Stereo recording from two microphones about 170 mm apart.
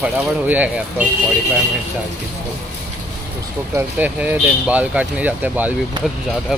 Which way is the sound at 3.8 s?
10° right (ahead or behind).